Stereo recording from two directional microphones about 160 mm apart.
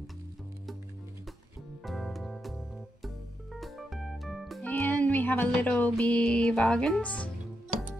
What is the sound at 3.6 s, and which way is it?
Music, centre (ahead or behind).